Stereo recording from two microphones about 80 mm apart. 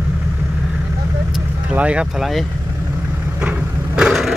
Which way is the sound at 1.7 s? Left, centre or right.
Centre.